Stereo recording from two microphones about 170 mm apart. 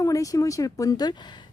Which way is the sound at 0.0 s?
20° left (ahead or behind).